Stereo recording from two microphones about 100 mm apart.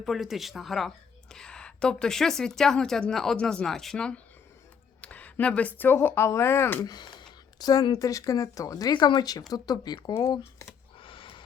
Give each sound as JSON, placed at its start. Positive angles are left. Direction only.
{"t": 0.0, "sound": "a woman's voice", "side_deg": 0}
{"t": 6.8, "sound": "speech", "side_deg": 45}
{"t": 11.0, "sound": "snort", "side_deg": 60}